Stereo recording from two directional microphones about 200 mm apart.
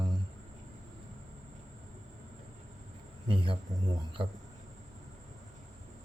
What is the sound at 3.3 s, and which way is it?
Speech, 25° right (ahead or behind).